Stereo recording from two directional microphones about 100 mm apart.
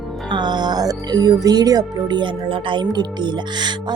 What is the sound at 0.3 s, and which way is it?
Speech, 50° right (ahead or behind).